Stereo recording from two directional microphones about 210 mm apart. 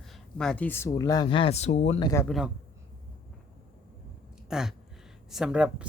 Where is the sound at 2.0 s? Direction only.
15° left (ahead or behind).